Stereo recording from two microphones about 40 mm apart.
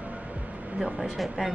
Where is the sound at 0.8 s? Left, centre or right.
Centre.